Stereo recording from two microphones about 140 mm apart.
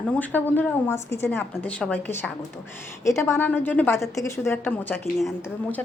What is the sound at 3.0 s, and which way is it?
A woman's voice, 20° left (ahead or behind).